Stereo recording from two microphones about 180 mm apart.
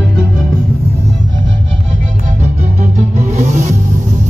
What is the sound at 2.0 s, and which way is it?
Music, 45° right (ahead or behind).